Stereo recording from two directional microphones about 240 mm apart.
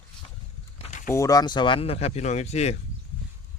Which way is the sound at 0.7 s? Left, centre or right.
Left.